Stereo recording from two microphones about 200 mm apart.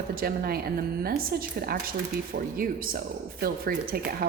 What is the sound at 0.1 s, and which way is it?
Speech, 45° right (ahead or behind).